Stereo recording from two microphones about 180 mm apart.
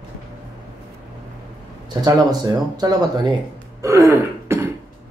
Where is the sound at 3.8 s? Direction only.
15° right (ahead or behind).